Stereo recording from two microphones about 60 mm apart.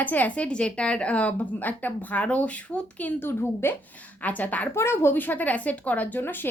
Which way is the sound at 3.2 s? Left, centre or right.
Left.